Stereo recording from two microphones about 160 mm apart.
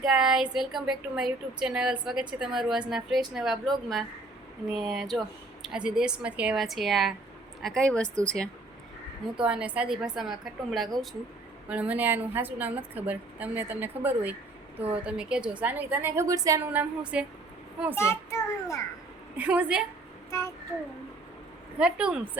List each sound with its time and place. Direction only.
0.0 s a woman's voice: 5° right (ahead or behind)
9.4 s a woman's voice: 5° right (ahead or behind)
16.7 s a woman's voice: 5° right (ahead or behind)
17.9 s a child's voice: 15° left (ahead or behind)
19.4 s a woman's voice: 10° right (ahead or behind)
21.8 s a woman's voice: 5° right (ahead or behind)